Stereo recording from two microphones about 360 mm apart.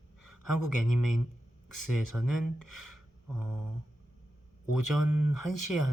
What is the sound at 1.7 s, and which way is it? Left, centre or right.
Speech, right.